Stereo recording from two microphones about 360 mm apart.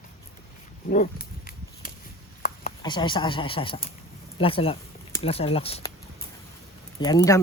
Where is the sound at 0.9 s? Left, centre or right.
Left.